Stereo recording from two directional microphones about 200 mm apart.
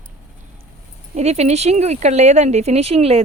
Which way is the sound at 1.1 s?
30° right (ahead or behind).